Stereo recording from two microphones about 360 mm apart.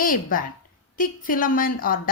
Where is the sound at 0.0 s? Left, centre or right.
Left.